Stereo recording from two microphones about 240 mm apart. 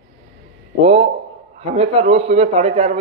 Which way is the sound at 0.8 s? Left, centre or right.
Right.